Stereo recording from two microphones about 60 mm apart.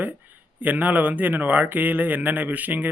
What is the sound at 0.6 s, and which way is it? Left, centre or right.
A man's voice, right.